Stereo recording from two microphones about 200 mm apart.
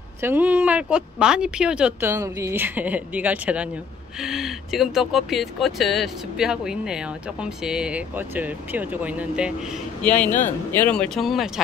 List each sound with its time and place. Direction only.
0.2 s speech: 10° right (ahead or behind)
10.0 s a man's voice: 5° left (ahead or behind)